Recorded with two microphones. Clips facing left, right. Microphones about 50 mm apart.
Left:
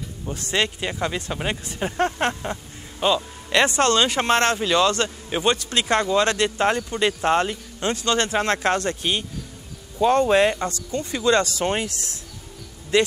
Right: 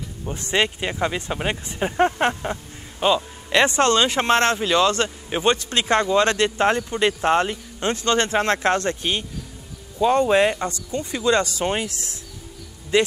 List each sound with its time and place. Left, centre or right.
0.2 s speech: centre
3.6 s speech: right
7.9 s speech: right
10.0 s speech: centre; by 11.6 s right
11.6 s speech: centre
12.9 s speech: right